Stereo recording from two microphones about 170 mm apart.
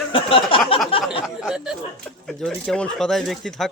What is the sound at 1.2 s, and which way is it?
Speech, 5° right (ahead or behind).